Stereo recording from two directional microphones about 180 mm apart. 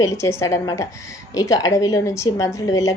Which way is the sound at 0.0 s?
15° left (ahead or behind).